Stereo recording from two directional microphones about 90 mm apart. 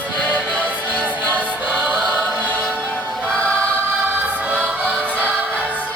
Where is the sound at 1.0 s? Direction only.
15° right (ahead or behind).